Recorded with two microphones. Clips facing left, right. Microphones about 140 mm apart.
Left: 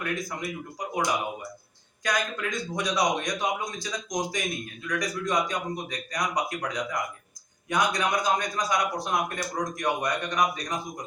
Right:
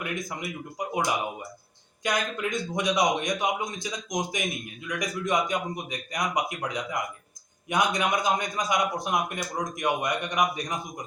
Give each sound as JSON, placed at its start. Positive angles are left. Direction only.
{"t": 0.0, "sound": "a man's voice", "side_deg": -20}